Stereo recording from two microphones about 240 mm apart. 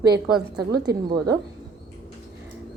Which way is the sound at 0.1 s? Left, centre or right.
Centre.